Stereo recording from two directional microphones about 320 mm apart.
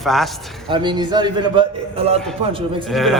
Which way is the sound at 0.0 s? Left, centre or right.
Centre.